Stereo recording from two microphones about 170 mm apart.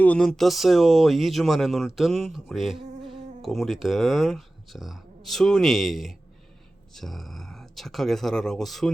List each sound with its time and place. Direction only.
0.0 s speech: 5° left (ahead or behind)
2.7 s insect: 30° right (ahead or behind)
3.4 s speech: centre (ahead or behind)